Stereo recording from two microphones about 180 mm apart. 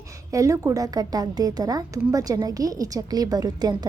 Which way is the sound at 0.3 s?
15° right (ahead or behind).